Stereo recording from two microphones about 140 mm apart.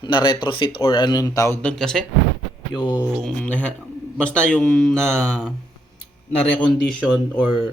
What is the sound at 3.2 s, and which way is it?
Speech, 10° left (ahead or behind).